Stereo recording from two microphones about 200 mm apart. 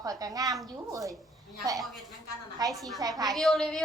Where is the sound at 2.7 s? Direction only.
Centre (ahead or behind).